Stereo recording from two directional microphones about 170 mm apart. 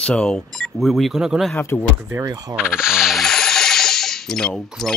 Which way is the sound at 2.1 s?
20° right (ahead or behind).